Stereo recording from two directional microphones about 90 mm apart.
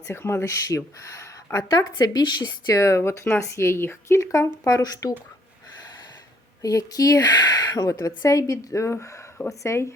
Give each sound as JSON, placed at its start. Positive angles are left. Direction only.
{"t": 0.1, "sound": "speech", "side_deg": 30}
{"t": 2.0, "sound": "speech", "side_deg": 50}
{"t": 2.7, "sound": "speech", "side_deg": 35}
{"t": 6.6, "sound": "speech", "side_deg": 40}
{"t": 7.9, "sound": "speech", "side_deg": 35}